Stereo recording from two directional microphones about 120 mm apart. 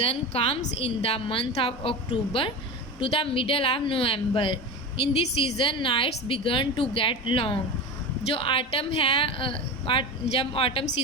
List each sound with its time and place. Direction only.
0.0 s speech: 55° left (ahead or behind)